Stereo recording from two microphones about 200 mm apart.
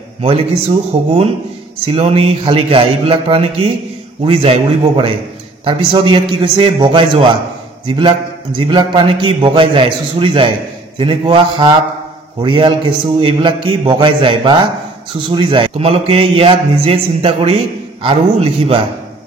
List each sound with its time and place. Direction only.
0.2 s a man's voice: 30° right (ahead or behind)